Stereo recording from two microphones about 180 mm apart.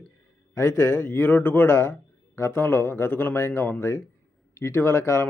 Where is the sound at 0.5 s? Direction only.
10° left (ahead or behind).